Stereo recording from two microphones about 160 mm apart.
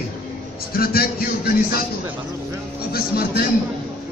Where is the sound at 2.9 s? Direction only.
70° left (ahead or behind).